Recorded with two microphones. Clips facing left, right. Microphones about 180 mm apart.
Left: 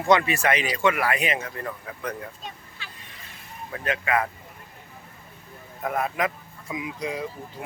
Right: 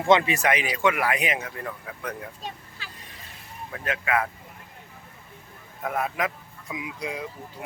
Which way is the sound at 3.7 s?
5° right (ahead or behind).